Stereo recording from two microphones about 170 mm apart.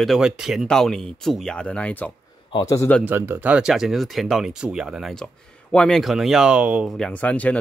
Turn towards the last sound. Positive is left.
turn(degrees=10)  # may be behind; listen again after turning